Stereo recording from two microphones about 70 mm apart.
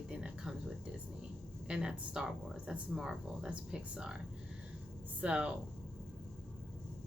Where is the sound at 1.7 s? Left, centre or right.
Centre.